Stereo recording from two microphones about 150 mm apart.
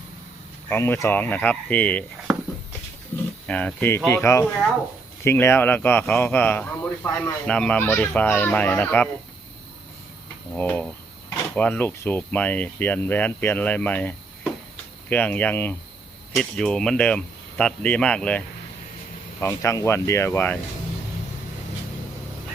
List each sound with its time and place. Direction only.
0.7 s speech: 15° left (ahead or behind)
2.3 s a sound: 5° right (ahead or behind)
3.4 s speech: 10° left (ahead or behind)
10.5 s speech: 10° left (ahead or behind)
19.4 s speech: 20° left (ahead or behind)